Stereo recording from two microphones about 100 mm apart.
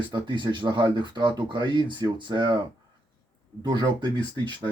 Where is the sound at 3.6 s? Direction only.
45° right (ahead or behind).